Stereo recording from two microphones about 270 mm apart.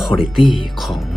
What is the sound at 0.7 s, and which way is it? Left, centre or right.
Speech, centre.